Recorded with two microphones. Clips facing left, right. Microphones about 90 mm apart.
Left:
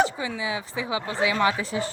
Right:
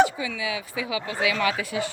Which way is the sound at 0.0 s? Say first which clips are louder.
Right 2 dB; 30° left (ahead or behind).